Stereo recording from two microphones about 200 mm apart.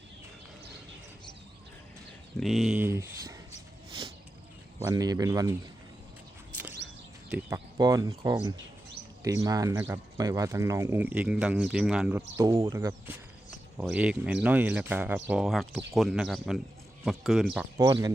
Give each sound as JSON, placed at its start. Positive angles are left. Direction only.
{"t": 2.4, "sound": "speech", "side_deg": 0}
{"t": 4.8, "sound": "speech", "side_deg": -20}
{"t": 7.3, "sound": "speech", "side_deg": -5}
{"t": 7.8, "sound": "speech", "side_deg": -20}
{"t": 12.5, "sound": "speech", "side_deg": -20}
{"t": 17.7, "sound": "speech", "side_deg": -15}